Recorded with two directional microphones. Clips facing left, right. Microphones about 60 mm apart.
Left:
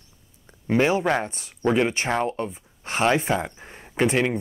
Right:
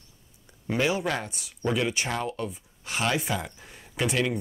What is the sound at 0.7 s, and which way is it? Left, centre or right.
Speech, left.